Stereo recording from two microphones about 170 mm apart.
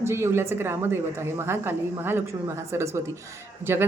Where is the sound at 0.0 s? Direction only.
15° right (ahead or behind).